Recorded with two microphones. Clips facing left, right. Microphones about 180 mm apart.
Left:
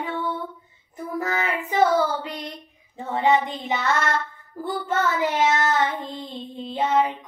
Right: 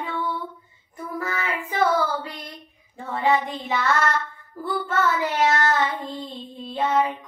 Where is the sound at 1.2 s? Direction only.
20° left (ahead or behind).